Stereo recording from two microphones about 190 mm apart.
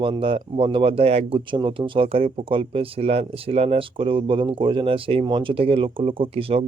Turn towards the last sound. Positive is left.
turn(degrees=-30)  # may be behind; listen again after turning